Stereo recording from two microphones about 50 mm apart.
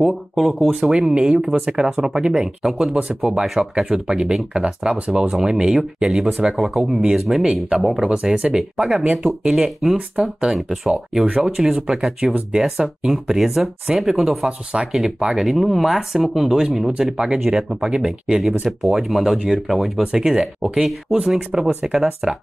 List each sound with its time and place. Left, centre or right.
0.0 s speech: centre
1.0 s speech: centre
2.9 s speech: right
3.2 s speech: centre
4.9 s speech: right
5.3 s speech: centre
8.1 s speech: centre
8.8 s speech: centre
10.1 s speech: centre
10.5 s speech: centre
11.4 s speech: centre
15.4 s speech: centre